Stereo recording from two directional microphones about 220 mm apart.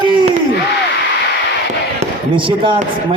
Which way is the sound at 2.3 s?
25° right (ahead or behind).